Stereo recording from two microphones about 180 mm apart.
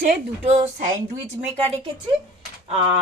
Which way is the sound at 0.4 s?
40° right (ahead or behind).